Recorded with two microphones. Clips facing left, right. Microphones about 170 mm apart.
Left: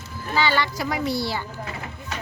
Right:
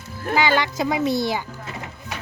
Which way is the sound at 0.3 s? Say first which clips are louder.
Right 3 dB; 15° right (ahead or behind).